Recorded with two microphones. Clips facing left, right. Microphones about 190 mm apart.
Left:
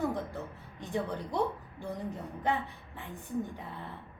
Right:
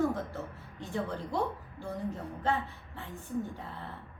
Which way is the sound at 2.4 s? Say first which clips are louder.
Even; 15° left (ahead or behind).